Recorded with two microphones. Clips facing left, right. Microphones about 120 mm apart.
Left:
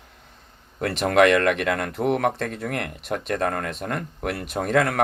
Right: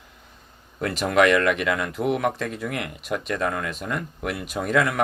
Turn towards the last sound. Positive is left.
turn(degrees=55)  # may be behind; listen again after turning